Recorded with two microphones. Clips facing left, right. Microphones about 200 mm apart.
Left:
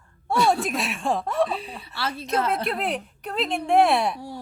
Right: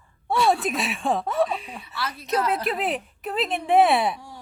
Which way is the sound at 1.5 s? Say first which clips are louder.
Even; 35° left (ahead or behind).